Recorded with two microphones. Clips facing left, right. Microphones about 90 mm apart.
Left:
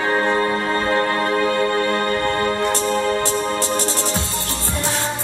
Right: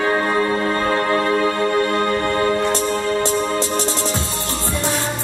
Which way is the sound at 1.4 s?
25° right (ahead or behind).